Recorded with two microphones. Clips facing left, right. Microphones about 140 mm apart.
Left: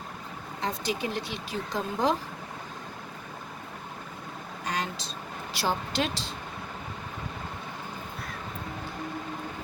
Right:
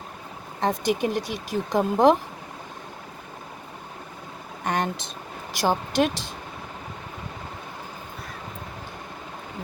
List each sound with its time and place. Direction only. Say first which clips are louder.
0.6 s speech: right 7 dB; 50° right (ahead or behind)
4.6 s speech: right 7 dB; 55° right (ahead or behind)